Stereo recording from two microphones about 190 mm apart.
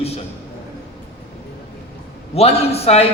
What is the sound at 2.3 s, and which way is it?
Speech, 30° left (ahead or behind).